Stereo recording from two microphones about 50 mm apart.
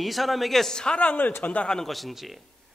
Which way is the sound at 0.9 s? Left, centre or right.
Left.